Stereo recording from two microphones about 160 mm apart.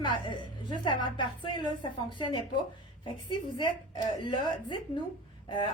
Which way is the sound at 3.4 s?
30° left (ahead or behind).